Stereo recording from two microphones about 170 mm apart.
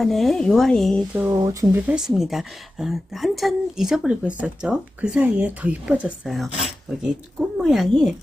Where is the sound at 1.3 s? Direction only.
20° right (ahead or behind).